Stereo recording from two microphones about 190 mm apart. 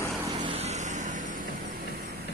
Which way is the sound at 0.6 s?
35° right (ahead or behind).